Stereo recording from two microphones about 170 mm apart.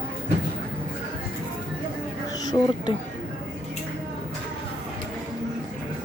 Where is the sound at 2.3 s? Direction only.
25° left (ahead or behind).